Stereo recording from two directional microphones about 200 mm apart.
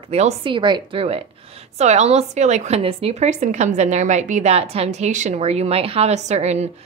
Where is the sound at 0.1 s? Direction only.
30° right (ahead or behind).